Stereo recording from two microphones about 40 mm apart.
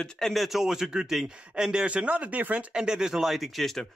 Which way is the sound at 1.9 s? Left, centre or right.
Right.